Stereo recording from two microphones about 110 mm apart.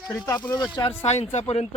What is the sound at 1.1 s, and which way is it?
Speech, 85° left.